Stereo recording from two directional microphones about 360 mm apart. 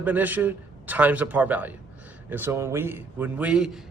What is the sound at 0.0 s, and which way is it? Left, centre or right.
A man's voice, centre.